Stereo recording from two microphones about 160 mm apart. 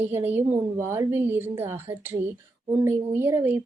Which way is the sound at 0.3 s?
15° right (ahead or behind).